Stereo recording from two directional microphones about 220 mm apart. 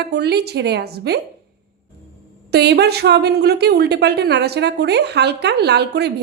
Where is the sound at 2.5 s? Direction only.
50° right (ahead or behind).